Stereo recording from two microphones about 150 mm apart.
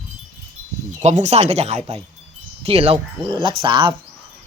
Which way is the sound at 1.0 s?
50° right (ahead or behind).